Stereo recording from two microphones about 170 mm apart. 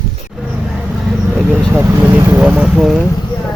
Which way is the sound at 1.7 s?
10° right (ahead or behind).